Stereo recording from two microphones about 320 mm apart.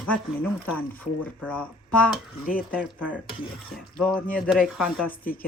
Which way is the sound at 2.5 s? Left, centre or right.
Left.